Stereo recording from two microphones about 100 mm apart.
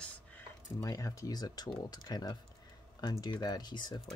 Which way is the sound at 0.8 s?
35° left (ahead or behind).